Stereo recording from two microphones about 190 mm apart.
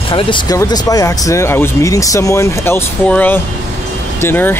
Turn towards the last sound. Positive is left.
turn(degrees=10)  # may be behind; listen again after turning